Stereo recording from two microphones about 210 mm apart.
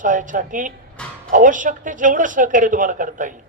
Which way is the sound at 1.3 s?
40° right (ahead or behind).